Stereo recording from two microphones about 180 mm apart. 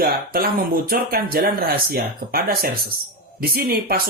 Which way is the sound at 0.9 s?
55° right (ahead or behind).